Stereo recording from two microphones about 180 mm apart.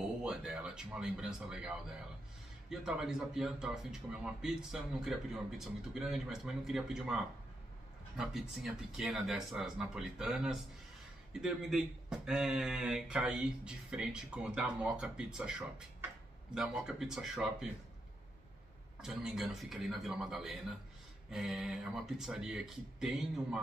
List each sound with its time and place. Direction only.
0.2 s a man's voice: 5° right (ahead or behind)
8.2 s a man's voice: 5° right (ahead or behind)
16.5 s a man's voice: 5° right (ahead or behind)
18.9 s a man's voice: 5° right (ahead or behind)